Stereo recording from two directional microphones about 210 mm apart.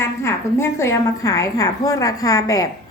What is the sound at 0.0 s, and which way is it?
A woman's voice, 10° left (ahead or behind).